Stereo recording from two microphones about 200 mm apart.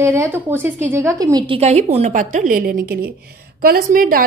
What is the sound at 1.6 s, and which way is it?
A woman's voice, 35° right (ahead or behind).